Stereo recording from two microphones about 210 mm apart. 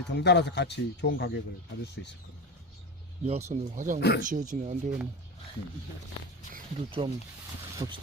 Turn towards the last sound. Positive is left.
turn(degrees=-20)  # may be behind; listen again after turning